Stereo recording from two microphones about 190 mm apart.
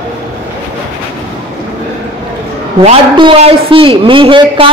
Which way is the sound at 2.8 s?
25° right (ahead or behind).